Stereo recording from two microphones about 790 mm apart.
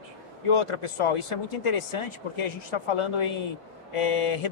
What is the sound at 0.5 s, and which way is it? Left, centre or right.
Speech, left.